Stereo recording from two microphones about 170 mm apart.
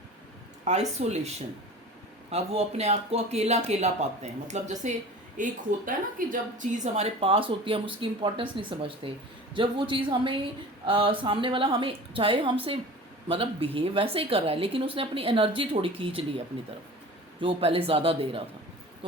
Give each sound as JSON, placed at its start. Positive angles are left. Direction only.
{"t": 0.6, "sound": "a woman's voice", "side_deg": -40}
{"t": 2.3, "sound": "a woman's voice", "side_deg": -40}
{"t": 17.4, "sound": "a woman's voice", "side_deg": -35}